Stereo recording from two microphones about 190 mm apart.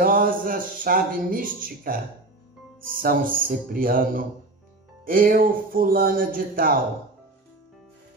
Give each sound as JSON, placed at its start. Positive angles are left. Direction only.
{"t": 0.0, "sound": "speech", "side_deg": -50}
{"t": 3.0, "sound": "speech", "side_deg": -50}